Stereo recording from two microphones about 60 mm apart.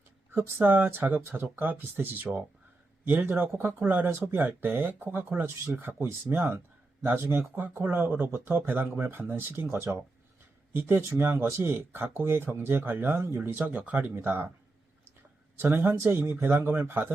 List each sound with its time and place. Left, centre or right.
0.3 s speech: right
15.5 s speech: right